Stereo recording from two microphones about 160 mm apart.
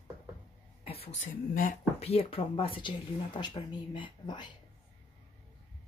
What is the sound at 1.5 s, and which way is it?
Speech, 60° left (ahead or behind).